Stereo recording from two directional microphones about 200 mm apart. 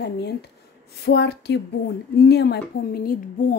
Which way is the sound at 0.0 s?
55° left (ahead or behind).